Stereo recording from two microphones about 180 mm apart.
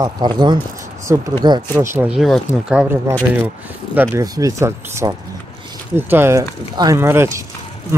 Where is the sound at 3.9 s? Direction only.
20° right (ahead or behind).